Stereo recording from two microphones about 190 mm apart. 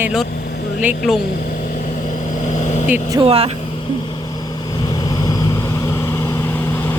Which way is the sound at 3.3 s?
30° right (ahead or behind).